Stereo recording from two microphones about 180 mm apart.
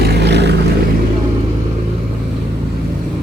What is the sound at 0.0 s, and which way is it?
Boat, 70° right (ahead or behind).